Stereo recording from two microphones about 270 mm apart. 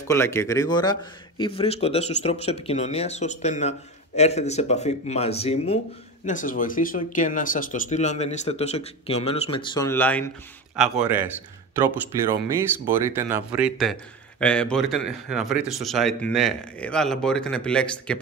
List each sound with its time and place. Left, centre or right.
0.1 s speech: centre
10.8 s speech: centre
13.1 s speech: centre